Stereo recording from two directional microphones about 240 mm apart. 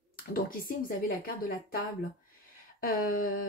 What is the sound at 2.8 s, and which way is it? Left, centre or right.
Speech, left.